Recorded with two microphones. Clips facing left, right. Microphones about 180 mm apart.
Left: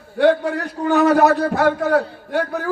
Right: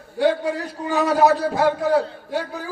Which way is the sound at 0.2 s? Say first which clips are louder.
Left 4 dB; 65° left (ahead or behind).